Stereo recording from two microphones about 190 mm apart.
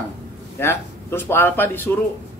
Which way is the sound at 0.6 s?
10° left (ahead or behind).